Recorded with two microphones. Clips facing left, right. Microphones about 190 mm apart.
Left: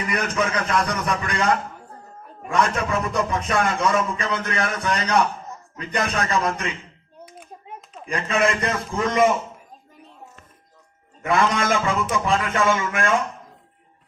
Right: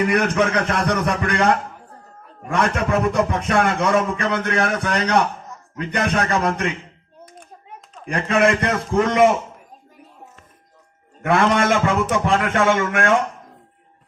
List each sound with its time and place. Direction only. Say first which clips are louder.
0.0 s a man's voice: right 6 dB; 60° right (ahead or behind)
2.5 s a man's voice: right 2 dB; 65° right (ahead or behind)
6.3 s a man's voice: right 3 dB; 60° right (ahead or behind)
8.0 s a man's voice: right 4 dB; 65° right (ahead or behind)
11.2 s a man's voice: right 4 dB; 70° right (ahead or behind)